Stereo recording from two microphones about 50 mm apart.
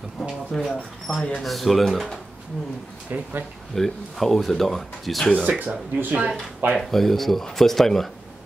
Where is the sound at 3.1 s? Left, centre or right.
Right.